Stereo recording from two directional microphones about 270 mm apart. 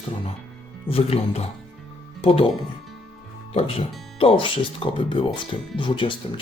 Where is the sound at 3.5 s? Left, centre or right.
Left.